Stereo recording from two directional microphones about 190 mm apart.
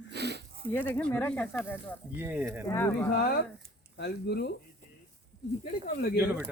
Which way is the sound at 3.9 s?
60° left (ahead or behind).